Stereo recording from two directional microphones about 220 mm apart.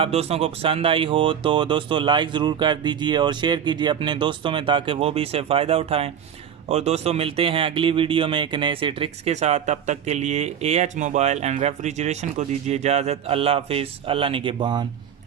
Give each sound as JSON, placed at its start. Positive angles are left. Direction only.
{"t": 0.0, "sound": "speech", "side_deg": -25}